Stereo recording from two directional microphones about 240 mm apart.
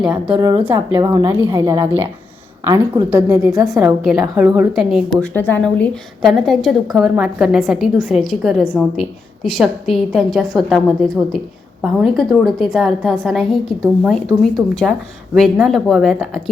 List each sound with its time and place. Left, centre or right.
0.0 s a woman's voice: centre
0.3 s a woman's voice: centre
15.4 s a woman's voice: centre